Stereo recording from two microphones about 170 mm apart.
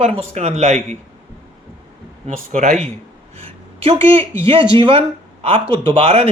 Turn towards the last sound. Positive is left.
turn(degrees=-35)  # may be behind; listen again after turning